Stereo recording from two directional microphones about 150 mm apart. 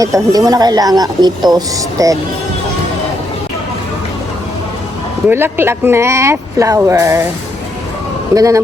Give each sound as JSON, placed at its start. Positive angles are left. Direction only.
{"t": 0.0, "sound": "speech", "side_deg": -25}
{"t": 5.3, "sound": "speech", "side_deg": -15}
{"t": 8.4, "sound": "speech", "side_deg": -20}